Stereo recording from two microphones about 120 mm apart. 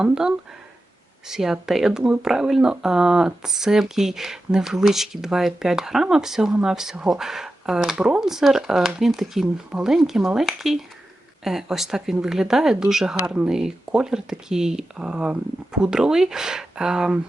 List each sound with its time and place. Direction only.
0.0 s speech: 5° right (ahead or behind)